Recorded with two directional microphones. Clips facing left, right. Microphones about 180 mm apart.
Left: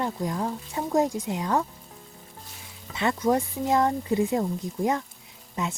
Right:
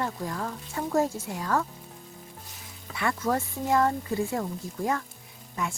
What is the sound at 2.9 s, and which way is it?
Speech, 20° left (ahead or behind).